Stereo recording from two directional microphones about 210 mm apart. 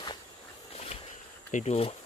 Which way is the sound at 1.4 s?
35° left (ahead or behind).